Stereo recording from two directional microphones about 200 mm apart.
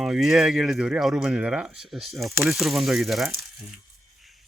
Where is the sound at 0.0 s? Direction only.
Centre (ahead or behind).